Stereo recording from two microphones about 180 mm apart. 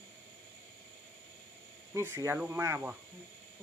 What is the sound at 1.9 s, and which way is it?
Speech, 15° right (ahead or behind).